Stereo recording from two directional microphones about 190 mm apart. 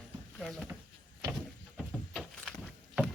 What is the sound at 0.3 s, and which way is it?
Speech, centre (ahead or behind).